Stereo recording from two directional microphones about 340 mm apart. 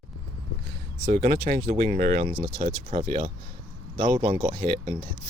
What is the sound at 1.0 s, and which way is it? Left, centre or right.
Speech, centre.